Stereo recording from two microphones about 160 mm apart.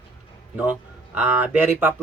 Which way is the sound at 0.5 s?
10° right (ahead or behind).